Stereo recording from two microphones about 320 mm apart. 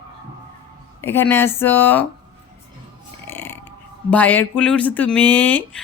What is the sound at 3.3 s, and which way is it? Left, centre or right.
Burping, centre.